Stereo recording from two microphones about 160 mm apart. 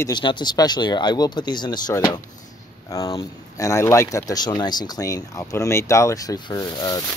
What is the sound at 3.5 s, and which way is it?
Speech, 20° left (ahead or behind).